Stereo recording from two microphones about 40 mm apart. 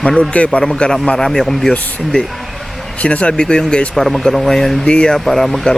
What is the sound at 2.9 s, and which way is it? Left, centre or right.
Speech, left.